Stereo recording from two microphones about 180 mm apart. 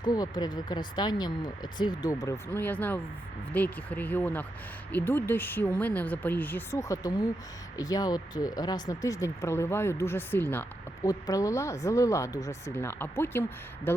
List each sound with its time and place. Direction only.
0.0 s speech: 20° left (ahead or behind)